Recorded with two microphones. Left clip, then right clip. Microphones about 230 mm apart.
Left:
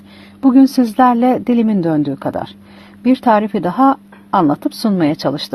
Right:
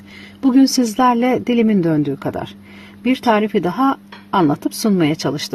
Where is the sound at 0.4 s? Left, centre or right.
Centre.